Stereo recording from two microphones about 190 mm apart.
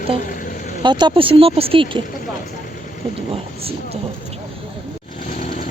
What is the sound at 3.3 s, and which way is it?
Speech, 30° right (ahead or behind).